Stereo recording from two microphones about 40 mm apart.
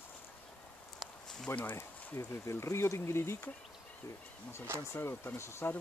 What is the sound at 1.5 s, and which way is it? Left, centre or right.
Speech, left.